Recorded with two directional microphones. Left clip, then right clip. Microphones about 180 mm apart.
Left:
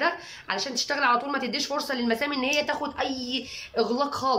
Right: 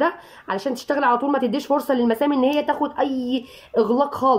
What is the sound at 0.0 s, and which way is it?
Speech, 45° right (ahead or behind).